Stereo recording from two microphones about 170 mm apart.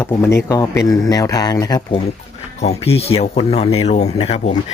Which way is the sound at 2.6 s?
40° left (ahead or behind).